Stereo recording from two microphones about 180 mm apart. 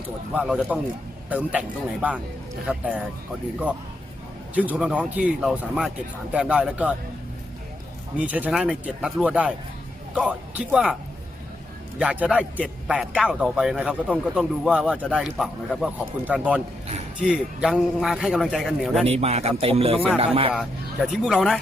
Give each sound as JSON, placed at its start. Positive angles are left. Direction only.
{"t": 0.3, "sound": "speech", "side_deg": -5}
{"t": 4.5, "sound": "a man's voice", "side_deg": -10}
{"t": 8.2, "sound": "speech", "side_deg": -5}
{"t": 11.9, "sound": "a man's voice", "side_deg": -5}
{"t": 19.0, "sound": "a man's voice", "side_deg": -35}
{"t": 20.5, "sound": "a man's voice", "side_deg": 0}